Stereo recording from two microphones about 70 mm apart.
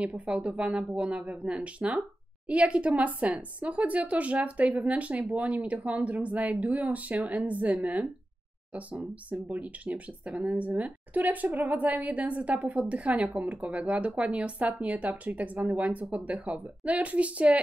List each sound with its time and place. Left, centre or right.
0.0 s a woman's voice: centre
9.3 s speech: right